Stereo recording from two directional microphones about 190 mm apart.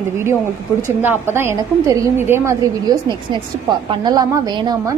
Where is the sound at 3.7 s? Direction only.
20° right (ahead or behind).